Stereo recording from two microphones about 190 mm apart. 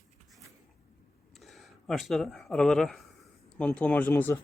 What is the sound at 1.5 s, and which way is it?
Speech, centre (ahead or behind).